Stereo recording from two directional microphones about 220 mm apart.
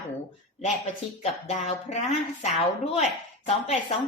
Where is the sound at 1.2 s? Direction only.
30° left (ahead or behind).